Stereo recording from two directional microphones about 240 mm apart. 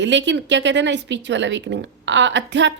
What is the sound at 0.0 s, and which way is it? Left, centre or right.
A woman's voice, right.